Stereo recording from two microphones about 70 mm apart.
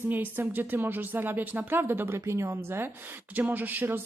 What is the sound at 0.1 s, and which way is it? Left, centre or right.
Speech, right.